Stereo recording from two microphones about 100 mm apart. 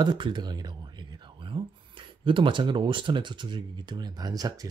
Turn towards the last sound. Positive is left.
turn(degrees=-40)  # may be behind; listen again after turning